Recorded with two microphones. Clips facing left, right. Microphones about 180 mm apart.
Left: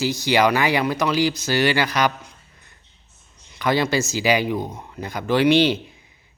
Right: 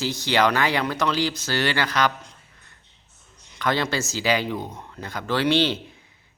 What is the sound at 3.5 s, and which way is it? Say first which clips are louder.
Speech: left 4 dB; 10° left (ahead or behind).